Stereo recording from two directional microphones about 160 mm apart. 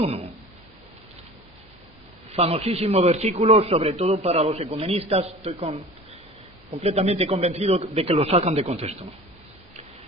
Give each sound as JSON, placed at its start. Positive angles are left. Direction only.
{"t": 0.0, "sound": "a man's voice", "side_deg": -40}
{"t": 2.3, "sound": "a man's voice", "side_deg": -40}